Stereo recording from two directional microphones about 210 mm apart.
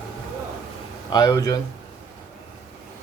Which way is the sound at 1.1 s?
20° left (ahead or behind).